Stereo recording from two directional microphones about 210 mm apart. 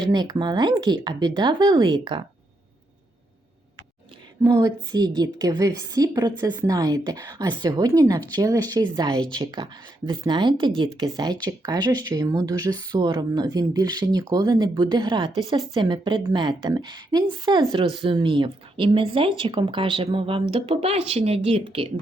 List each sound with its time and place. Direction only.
0.1 s speech: 20° right (ahead or behind)
4.4 s a woman's voice: 15° right (ahead or behind)